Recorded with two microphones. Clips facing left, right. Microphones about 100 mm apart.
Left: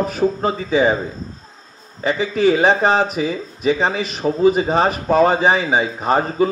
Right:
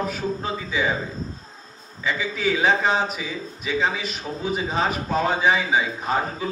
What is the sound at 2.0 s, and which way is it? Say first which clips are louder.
A man's voice: left 8 dB; 60° left (ahead or behind).